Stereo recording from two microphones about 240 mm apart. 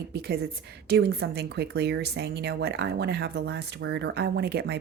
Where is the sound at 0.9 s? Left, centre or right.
Right.